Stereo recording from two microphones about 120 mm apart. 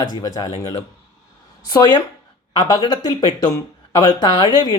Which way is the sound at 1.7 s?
30° left (ahead or behind).